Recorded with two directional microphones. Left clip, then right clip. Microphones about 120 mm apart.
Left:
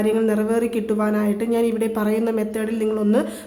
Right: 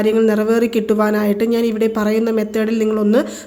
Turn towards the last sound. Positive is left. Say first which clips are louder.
# right 5 dB
turn(degrees=-40)  # may be behind; listen again after turning